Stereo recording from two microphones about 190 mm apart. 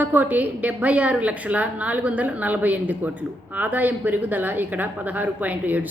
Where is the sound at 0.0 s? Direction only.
10° right (ahead or behind).